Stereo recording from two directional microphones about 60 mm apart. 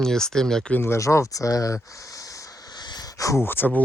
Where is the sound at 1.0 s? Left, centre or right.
Left.